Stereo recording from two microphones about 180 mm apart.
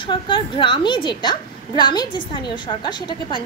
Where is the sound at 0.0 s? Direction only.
30° left (ahead or behind).